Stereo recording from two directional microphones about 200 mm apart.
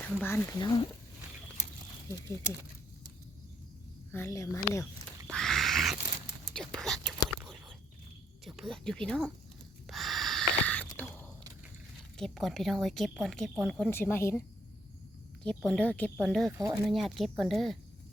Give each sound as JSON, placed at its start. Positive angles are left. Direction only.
{"t": 0.0, "sound": "speech", "side_deg": 10}
{"t": 2.0, "sound": "speech", "side_deg": 15}
{"t": 4.1, "sound": "speech", "side_deg": 15}
{"t": 5.3, "sound": "a sound", "side_deg": 0}
{"t": 6.5, "sound": "whispering", "side_deg": 5}
{"t": 8.4, "sound": "a woman's voice", "side_deg": 0}
{"t": 9.9, "sound": "gasp", "side_deg": 0}
{"t": 12.1, "sound": "a woman's voice", "side_deg": 0}
{"t": 13.9, "sound": "speech", "side_deg": 10}
{"t": 15.4, "sound": "a woman's voice", "side_deg": 5}